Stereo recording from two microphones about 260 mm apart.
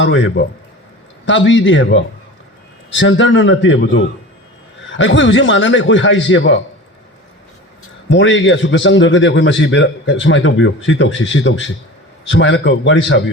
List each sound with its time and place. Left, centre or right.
0.0 s a man's voice: left
8.1 s a man's voice: left